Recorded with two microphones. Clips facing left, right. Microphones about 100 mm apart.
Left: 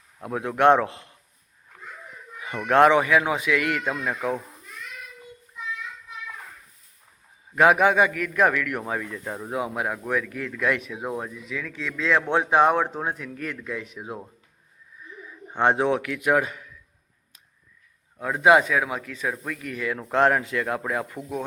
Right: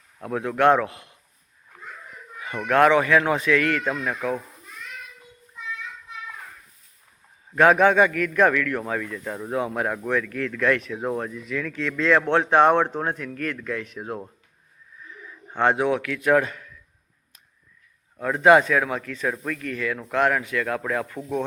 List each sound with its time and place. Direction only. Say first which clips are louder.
0.2 s speech: even; 15° left (ahead or behind)
2.6 s speech: even; 25° left (ahead or behind)
7.5 s speech: right 2 dB; 10° left (ahead or behind)
15.3 s a man's voice: even; 15° left (ahead or behind)
18.2 s speech: right 2 dB; 5° left (ahead or behind)
19.9 s speech: left 2 dB; 25° left (ahead or behind)